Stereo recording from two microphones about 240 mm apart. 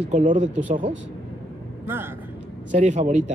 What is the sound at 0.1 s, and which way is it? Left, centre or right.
Speech, right.